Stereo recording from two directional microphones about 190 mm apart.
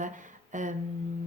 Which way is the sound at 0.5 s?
40° right (ahead or behind).